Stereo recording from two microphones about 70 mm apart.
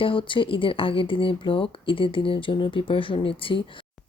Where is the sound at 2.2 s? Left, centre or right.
Left.